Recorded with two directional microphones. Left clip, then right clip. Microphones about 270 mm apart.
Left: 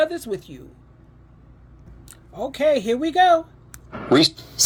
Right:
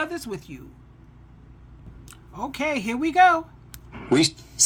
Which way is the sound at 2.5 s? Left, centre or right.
Centre.